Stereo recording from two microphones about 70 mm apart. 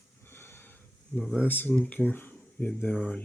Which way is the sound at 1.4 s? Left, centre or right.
Left.